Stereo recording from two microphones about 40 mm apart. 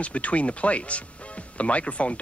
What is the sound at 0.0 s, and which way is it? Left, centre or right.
Speech, left.